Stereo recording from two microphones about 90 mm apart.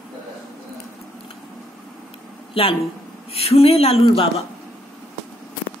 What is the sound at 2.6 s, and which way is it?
A woman's voice, 90° left.